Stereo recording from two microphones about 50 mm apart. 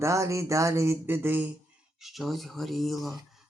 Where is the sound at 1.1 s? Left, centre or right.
Right.